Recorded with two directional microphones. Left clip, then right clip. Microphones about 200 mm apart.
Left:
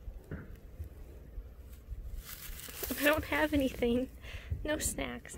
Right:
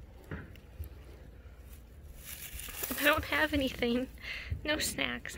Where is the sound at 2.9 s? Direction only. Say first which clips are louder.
Right 1 dB; 20° left (ahead or behind).